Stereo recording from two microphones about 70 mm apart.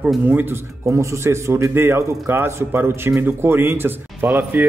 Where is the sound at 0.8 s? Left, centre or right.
Right.